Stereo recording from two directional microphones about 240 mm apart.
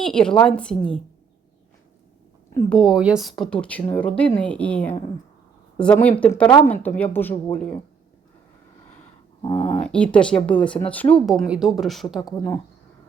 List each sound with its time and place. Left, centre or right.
0.0 s speech: centre
2.6 s a woman's voice: centre
9.4 s speech: left
9.8 s speech: centre